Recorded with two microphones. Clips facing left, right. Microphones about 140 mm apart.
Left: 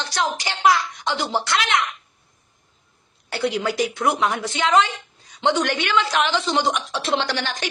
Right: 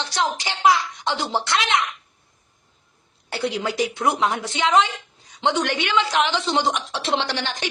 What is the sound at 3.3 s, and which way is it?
Speech, 25° right (ahead or behind).